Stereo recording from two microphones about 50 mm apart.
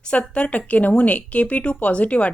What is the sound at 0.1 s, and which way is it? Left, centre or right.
Speech, left.